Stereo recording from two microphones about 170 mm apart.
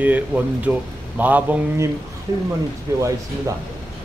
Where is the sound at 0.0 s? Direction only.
10° right (ahead or behind).